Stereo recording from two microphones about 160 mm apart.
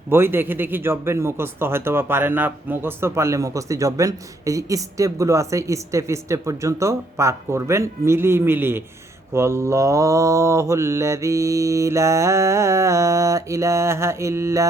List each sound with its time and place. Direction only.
0.1 s speech: 15° right (ahead or behind)
9.3 s mantra: 15° right (ahead or behind)